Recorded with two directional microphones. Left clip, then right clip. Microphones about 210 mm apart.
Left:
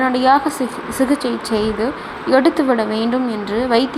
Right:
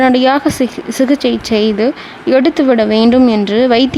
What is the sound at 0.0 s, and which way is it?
Speech, 30° right (ahead or behind).